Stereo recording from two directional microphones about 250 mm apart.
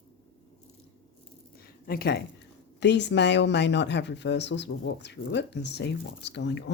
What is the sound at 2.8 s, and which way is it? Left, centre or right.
Speech, left.